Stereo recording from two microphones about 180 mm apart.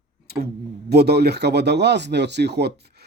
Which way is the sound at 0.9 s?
65° right (ahead or behind).